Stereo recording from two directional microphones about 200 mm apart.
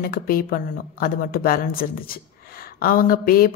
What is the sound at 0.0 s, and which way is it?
A woman's voice, 45° left (ahead or behind).